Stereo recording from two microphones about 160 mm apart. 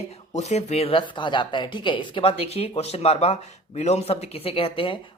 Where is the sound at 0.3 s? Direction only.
45° left (ahead or behind).